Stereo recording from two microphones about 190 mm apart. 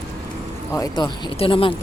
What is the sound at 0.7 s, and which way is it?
Speech, 20° left (ahead or behind).